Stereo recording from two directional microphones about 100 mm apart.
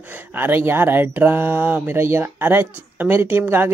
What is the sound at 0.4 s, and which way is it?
A woman's voice, 20° right (ahead or behind).